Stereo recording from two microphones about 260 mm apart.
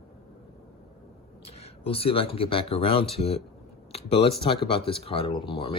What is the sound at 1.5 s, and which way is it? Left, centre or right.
Speech, left.